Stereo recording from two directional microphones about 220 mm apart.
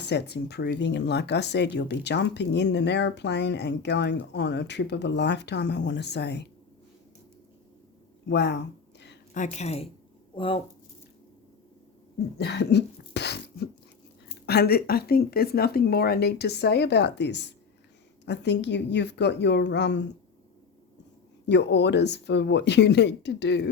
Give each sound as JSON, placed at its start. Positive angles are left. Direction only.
{"t": 0.0, "sound": "speech", "side_deg": 50}
{"t": 8.3, "sound": "a sound", "side_deg": 50}
{"t": 9.3, "sound": "speech", "side_deg": 35}
{"t": 12.4, "sound": "cough", "side_deg": 50}
{"t": 14.3, "sound": "speech", "side_deg": 45}
{"t": 21.4, "sound": "speech", "side_deg": 50}